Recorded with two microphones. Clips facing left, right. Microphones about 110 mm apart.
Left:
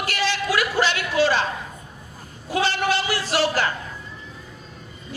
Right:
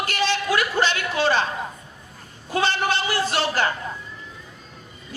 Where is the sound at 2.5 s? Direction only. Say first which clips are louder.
Even; 30° right (ahead or behind).